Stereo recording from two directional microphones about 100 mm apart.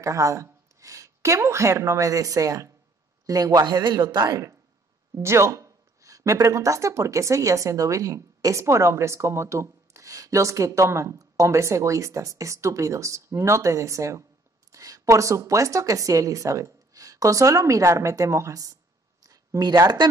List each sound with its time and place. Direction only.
0.0 s a woman's voice: 30° right (ahead or behind)
5.1 s speech: 25° right (ahead or behind)
19.2 s a sound: 40° right (ahead or behind)